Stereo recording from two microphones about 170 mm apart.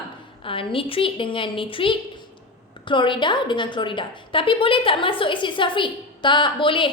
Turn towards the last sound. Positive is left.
turn(degrees=30)  # may be behind; listen again after turning